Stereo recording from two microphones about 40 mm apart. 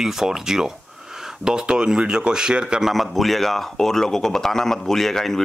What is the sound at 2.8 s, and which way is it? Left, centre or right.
Speech, centre.